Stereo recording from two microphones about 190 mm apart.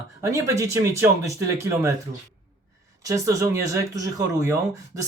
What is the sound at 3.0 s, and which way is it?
Speech, 15° right (ahead or behind).